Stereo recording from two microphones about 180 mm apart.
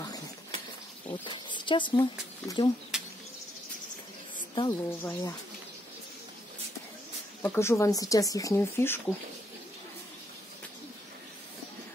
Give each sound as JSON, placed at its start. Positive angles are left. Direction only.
{"t": 1.2, "sound": "speech", "side_deg": 25}
{"t": 2.9, "sound": "insect", "side_deg": -5}
{"t": 4.6, "sound": "a woman's voice", "side_deg": 20}
{"t": 7.4, "sound": "speech", "side_deg": 15}